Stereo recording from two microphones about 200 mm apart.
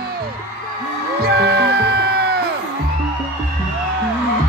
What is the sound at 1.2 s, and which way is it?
Music, 55° right (ahead or behind).